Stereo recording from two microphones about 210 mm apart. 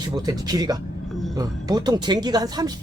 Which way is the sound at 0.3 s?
20° right (ahead or behind).